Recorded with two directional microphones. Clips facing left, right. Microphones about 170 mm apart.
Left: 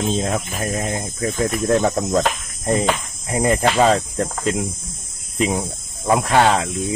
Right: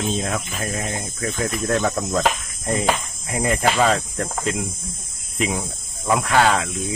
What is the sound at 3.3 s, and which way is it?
Speech, 25° left (ahead or behind).